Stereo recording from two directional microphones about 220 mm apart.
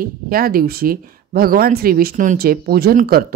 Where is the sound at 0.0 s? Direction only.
40° right (ahead or behind).